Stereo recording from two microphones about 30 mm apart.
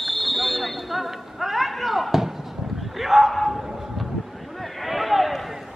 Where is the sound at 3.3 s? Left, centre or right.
Centre.